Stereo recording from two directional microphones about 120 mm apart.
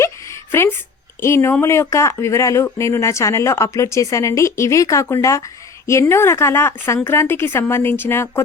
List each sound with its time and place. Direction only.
0.5 s a woman's voice: 20° left (ahead or behind)